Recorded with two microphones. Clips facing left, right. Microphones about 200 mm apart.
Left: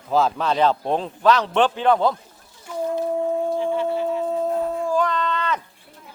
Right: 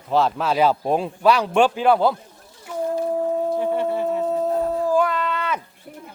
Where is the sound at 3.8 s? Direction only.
55° right (ahead or behind).